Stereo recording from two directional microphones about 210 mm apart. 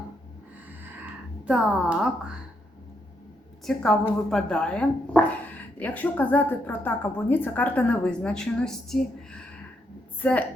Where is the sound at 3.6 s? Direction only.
Centre (ahead or behind).